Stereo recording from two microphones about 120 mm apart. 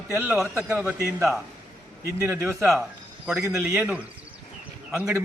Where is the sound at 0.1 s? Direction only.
15° right (ahead or behind).